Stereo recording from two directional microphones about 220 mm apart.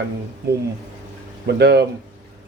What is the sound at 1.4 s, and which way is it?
Speech, 50° right (ahead or behind).